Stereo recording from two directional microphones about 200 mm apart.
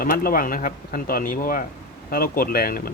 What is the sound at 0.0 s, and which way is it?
Speech, 45° left (ahead or behind).